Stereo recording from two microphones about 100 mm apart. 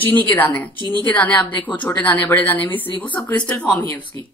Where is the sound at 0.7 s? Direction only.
45° right (ahead or behind).